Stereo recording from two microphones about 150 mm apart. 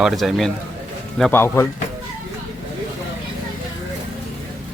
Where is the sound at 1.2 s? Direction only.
10° left (ahead or behind).